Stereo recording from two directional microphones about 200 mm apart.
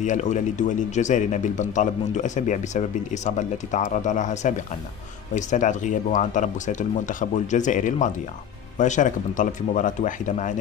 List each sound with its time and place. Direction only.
0.0 s a man's voice: 35° left (ahead or behind)